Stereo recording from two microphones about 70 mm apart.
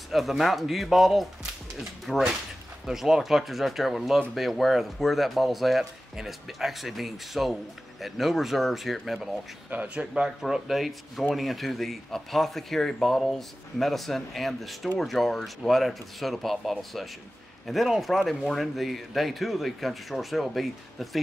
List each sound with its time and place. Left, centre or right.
0.1 s speech: centre
9.7 s speech: centre
10.4 s speech: centre